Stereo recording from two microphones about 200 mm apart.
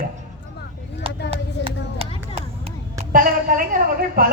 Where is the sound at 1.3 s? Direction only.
30° right (ahead or behind).